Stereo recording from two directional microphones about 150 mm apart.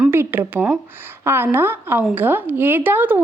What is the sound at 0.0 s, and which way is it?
A woman's voice, 15° right (ahead or behind).